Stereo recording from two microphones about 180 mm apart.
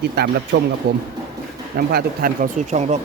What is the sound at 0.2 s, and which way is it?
Speech, 60° right (ahead or behind).